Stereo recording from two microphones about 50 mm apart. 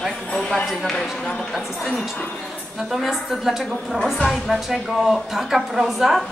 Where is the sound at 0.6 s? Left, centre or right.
Centre.